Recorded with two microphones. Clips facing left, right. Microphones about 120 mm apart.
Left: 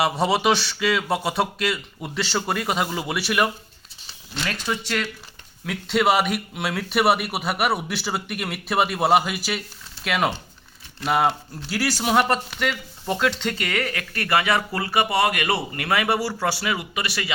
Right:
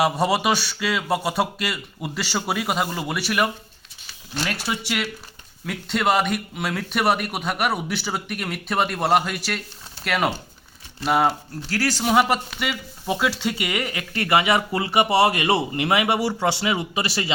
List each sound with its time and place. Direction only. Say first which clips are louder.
0.0 s speech: even; centre (ahead or behind)
5.6 s speech: left 2 dB; centre (ahead or behind); by 17.3 s 30° right (ahead or behind)